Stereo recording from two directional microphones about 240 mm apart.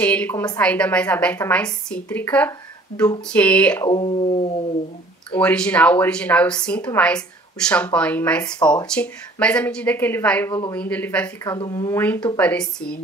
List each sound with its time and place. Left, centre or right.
0.0 s a woman's voice: centre
3.9 s speech: left
5.3 s a woman's voice: centre